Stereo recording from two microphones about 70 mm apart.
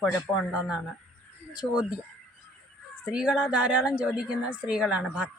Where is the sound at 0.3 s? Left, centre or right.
Left.